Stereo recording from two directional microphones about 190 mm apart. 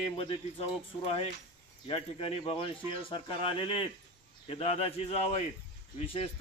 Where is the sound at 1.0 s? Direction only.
30° left (ahead or behind).